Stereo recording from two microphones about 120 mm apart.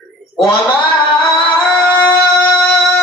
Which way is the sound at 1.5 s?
15° left (ahead or behind).